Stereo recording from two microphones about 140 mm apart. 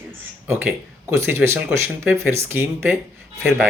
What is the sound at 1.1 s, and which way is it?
A woman's voice, 20° right (ahead or behind).